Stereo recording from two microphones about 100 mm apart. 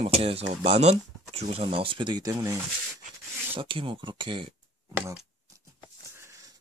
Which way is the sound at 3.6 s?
60° right (ahead or behind).